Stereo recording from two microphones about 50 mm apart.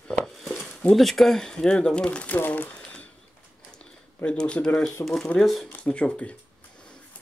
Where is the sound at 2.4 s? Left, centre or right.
Left.